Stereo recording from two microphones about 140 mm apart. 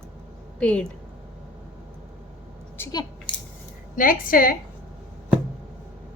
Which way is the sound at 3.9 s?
85° left.